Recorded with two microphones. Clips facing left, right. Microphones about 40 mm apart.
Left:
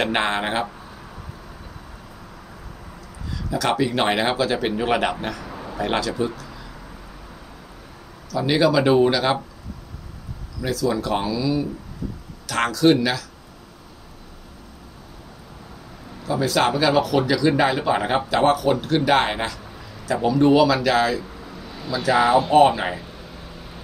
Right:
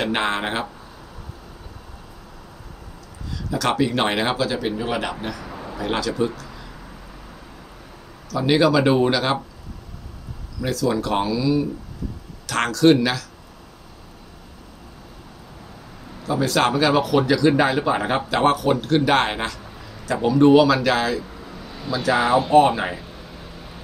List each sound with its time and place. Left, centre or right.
0.1 s speech: centre
3.4 s speech: centre
4.5 s speech: left
5.4 s a sound: centre
5.8 s speech: centre
6.4 s a sound: centre
8.3 s speech: centre
11.1 s speech: centre
12.4 s speech: centre
16.1 s a sound: centre
16.4 s a man's voice: centre